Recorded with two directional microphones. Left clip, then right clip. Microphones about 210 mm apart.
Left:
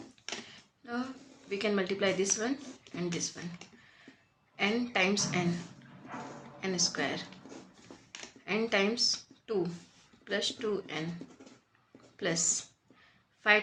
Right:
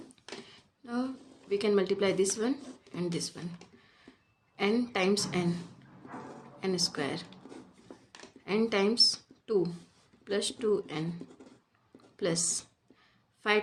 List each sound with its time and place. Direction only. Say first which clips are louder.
0.5 s a sound: right 1 dB; 60° right (ahead or behind)
1.5 s speech: right 4 dB; 60° right (ahead or behind)
4.5 s speech: even; 55° right (ahead or behind)
6.6 s speech: even; 60° right (ahead or behind)
8.4 s speech: right 1 dB; 60° right (ahead or behind)
12.1 s a woman's voice: even; 60° right (ahead or behind)